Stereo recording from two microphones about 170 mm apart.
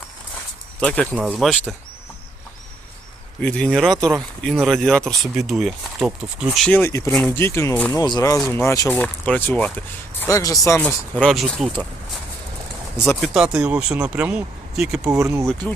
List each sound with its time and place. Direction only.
0.8 s speech: 5° left (ahead or behind)
3.4 s speech: 5° left (ahead or behind)
6.7 s speech: 15° left (ahead or behind)
8.4 s speech: 10° left (ahead or behind)
10.8 s speech: 5° left (ahead or behind)
13.1 s speech: 5° left (ahead or behind)
15.0 s speech: 20° right (ahead or behind)